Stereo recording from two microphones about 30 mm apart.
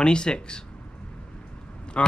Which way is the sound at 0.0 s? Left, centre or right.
Left.